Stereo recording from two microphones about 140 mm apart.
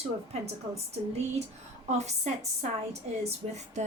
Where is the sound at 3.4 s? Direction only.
45° right (ahead or behind).